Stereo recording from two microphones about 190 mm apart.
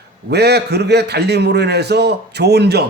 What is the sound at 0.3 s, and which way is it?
A man's voice, 60° right (ahead or behind).